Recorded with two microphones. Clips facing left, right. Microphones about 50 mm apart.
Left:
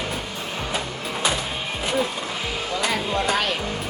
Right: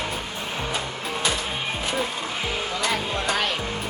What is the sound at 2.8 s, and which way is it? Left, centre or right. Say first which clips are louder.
Speech: left 3 dB; centre.